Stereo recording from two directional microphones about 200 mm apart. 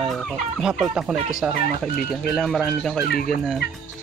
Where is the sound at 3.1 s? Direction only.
50° left (ahead or behind).